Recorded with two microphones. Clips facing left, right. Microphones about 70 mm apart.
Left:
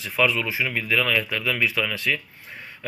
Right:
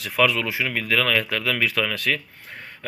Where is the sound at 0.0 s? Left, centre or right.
Right.